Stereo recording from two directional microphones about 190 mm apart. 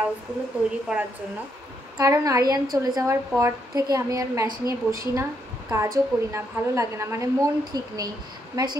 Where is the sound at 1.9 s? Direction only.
15° right (ahead or behind).